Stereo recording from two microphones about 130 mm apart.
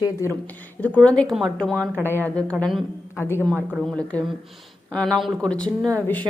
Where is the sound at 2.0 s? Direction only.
15° left (ahead or behind).